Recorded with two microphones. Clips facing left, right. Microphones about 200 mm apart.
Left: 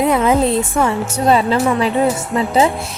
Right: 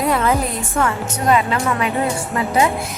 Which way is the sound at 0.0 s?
20° left (ahead or behind).